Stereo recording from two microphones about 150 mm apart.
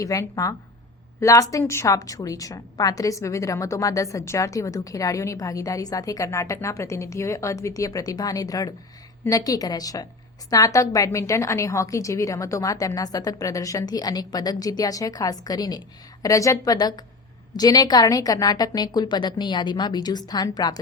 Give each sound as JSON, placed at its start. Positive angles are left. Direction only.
{"t": 0.0, "sound": "a woman's voice", "side_deg": 20}